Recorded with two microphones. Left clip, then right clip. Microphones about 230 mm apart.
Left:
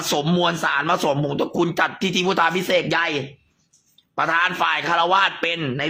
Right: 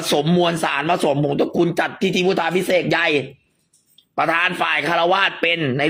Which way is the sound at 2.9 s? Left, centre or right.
Centre.